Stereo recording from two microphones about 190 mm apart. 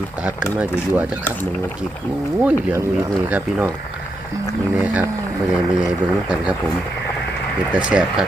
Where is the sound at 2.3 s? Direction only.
10° right (ahead or behind).